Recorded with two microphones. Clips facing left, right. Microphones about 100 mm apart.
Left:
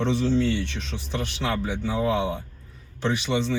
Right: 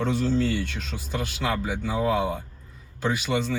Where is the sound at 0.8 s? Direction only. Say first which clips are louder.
Even; 10° right (ahead or behind).